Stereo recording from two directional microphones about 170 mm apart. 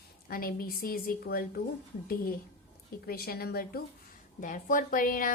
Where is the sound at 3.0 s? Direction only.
60° left (ahead or behind).